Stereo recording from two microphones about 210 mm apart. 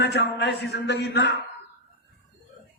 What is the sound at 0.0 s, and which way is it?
A man's voice, 55° left (ahead or behind).